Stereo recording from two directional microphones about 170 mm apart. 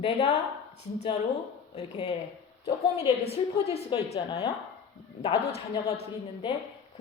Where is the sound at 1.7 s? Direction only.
40° left (ahead or behind).